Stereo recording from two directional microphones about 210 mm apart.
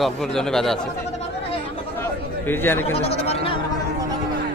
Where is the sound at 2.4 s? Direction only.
10° left (ahead or behind).